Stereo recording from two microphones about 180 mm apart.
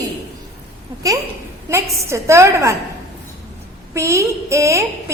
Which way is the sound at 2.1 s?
15° right (ahead or behind).